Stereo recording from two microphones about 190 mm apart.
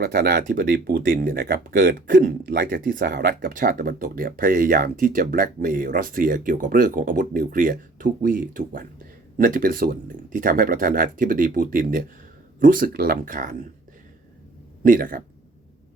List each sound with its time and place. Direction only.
0.0 s speech: 55° right (ahead or behind)
14.8 s speech: 45° right (ahead or behind)